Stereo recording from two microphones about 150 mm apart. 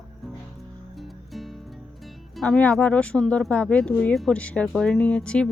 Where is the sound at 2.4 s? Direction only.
5° left (ahead or behind).